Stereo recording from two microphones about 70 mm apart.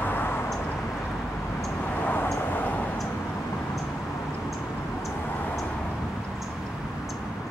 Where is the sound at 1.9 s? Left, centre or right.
Left.